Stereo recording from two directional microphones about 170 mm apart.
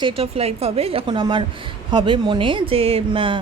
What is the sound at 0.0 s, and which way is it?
Speech, 35° right (ahead or behind).